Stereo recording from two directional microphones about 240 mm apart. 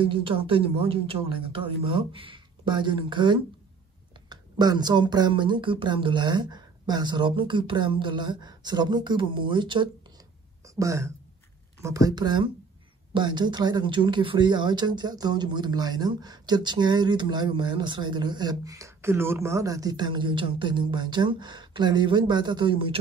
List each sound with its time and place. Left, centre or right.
0.0 s speech: right